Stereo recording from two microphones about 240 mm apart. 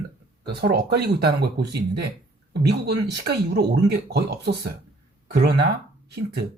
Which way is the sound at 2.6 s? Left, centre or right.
Right.